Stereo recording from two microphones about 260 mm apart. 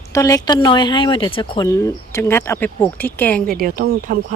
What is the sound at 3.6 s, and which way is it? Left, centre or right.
Speech, right.